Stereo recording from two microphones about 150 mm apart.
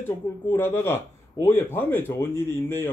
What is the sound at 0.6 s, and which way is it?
Speech, 15° left (ahead or behind).